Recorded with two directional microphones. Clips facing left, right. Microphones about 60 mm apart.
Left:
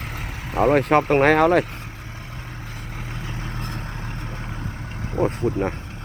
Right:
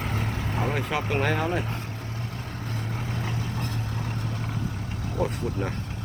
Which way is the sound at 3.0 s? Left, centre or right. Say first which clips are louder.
Right 2 dB; centre.